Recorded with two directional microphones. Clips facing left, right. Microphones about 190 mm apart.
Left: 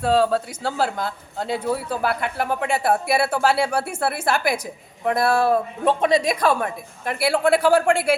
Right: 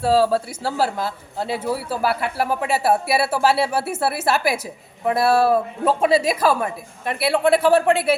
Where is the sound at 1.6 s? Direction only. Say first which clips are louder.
Right 1 dB; 5° right (ahead or behind).